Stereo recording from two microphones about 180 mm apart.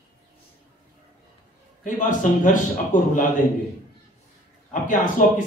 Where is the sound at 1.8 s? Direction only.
45° left (ahead or behind).